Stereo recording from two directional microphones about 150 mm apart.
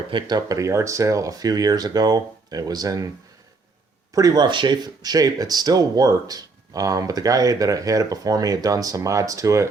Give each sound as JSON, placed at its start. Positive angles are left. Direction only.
{"t": 0.1, "sound": "speech", "side_deg": -30}
{"t": 4.1, "sound": "speech", "side_deg": -25}